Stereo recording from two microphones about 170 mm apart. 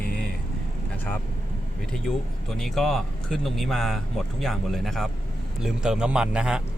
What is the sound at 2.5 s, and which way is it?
Speech, centre (ahead or behind).